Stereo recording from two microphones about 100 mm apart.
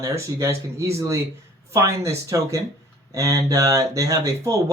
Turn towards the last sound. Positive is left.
turn(degrees=-35)  # may be behind; listen again after turning